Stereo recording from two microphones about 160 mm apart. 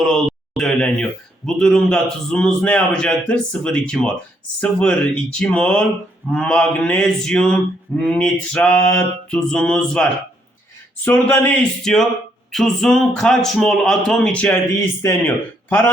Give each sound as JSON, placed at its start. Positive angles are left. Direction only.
{"t": 0.0, "sound": "a man's voice", "side_deg": 0}
{"t": 9.3, "sound": "a man's voice", "side_deg": 5}